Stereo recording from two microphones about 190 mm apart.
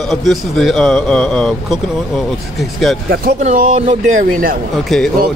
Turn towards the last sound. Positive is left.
turn(degrees=0)  # may be behind; listen again after turning